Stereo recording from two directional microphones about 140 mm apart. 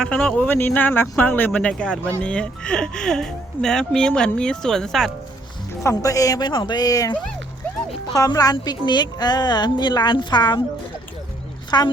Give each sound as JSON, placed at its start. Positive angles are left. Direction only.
{"t": 0.0, "sound": "speech", "side_deg": 5}
{"t": 5.8, "sound": "speech", "side_deg": 20}
{"t": 11.7, "sound": "speech", "side_deg": 30}